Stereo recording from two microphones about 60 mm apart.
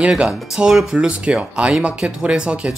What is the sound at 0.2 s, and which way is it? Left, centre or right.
Speech, centre.